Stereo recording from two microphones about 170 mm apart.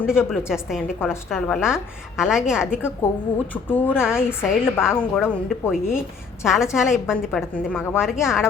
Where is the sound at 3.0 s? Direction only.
10° left (ahead or behind).